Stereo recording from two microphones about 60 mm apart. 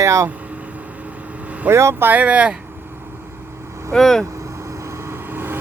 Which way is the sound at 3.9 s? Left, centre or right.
Centre.